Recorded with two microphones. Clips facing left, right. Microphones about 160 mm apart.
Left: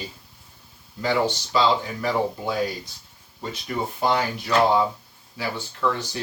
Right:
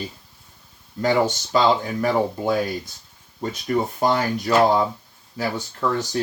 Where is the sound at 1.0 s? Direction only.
45° right (ahead or behind).